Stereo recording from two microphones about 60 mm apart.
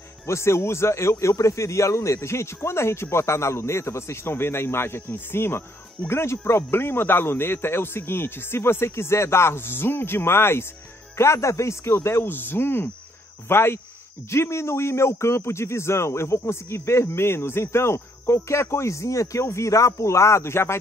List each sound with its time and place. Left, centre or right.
0.3 s a man's voice: left
11.1 s a man's voice: left